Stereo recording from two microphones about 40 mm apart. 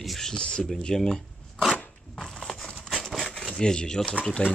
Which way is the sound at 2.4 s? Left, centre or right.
Centre.